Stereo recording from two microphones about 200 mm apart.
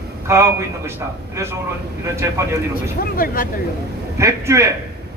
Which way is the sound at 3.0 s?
45° left (ahead or behind).